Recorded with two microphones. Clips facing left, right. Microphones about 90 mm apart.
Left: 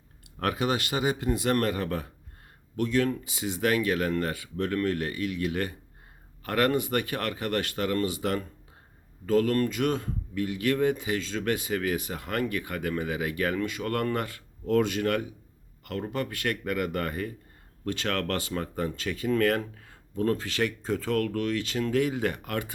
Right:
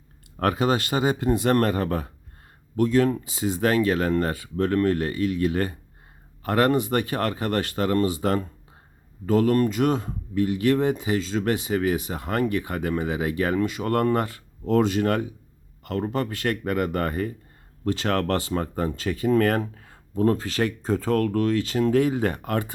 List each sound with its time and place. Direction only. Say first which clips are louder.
0.3 s speech: right 5 dB; 40° right (ahead or behind)